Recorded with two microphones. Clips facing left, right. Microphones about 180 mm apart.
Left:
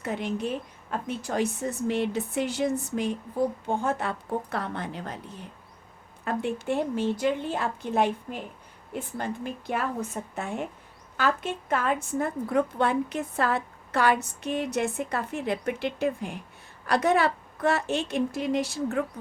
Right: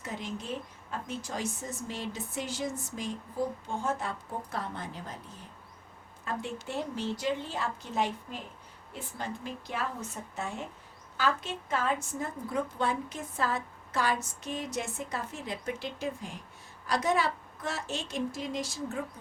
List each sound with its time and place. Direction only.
0.0 s a woman's voice: 65° left (ahead or behind)